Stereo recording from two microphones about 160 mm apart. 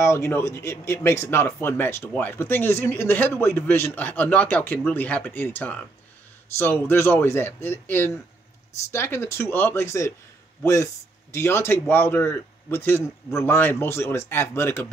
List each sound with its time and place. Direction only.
0.0 s speech: 15° left (ahead or behind)